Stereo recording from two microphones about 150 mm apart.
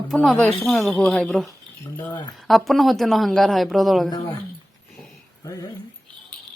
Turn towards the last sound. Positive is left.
turn(degrees=25)  # may be behind; listen again after turning